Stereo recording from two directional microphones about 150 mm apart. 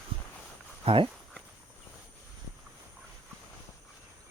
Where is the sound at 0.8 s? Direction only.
40° right (ahead or behind).